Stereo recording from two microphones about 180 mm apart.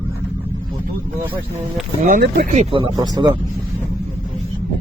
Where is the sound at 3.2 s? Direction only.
20° right (ahead or behind).